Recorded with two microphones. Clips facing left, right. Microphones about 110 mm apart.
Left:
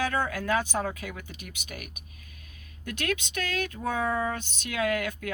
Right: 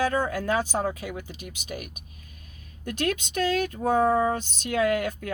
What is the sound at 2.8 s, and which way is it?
Speech, 40° right (ahead or behind).